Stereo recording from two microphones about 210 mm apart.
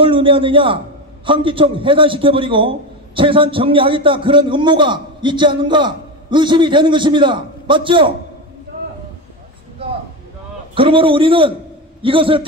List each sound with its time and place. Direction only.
0.0 s a man's voice: 25° right (ahead or behind)
10.7 s a man's voice: 25° right (ahead or behind)